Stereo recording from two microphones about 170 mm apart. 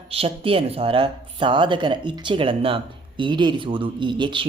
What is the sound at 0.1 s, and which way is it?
Speech, 35° right (ahead or behind).